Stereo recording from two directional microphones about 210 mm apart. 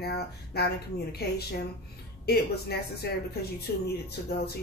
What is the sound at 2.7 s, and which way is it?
Speech, 50° left (ahead or behind).